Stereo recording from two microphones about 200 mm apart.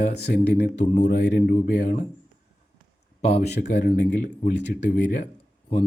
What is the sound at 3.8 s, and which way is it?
Speech, 45° left (ahead or behind).